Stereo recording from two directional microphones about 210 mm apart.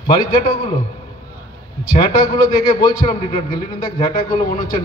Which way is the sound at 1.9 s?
20° left (ahead or behind).